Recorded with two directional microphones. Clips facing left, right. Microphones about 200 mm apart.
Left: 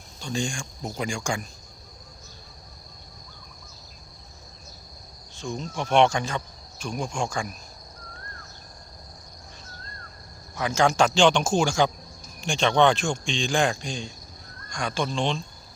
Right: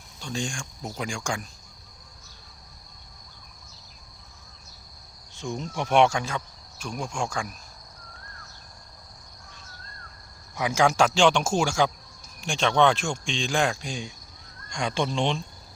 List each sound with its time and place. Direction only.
0.2 s speech: centre (ahead or behind)
5.4 s speech: 20° right (ahead or behind)
10.6 s speech: 15° right (ahead or behind)
14.7 s speech: 25° right (ahead or behind)